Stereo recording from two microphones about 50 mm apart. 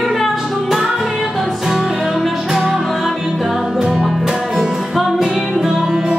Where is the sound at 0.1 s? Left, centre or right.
Centre.